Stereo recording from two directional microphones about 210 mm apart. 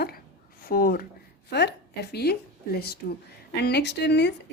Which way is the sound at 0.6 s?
45° left (ahead or behind).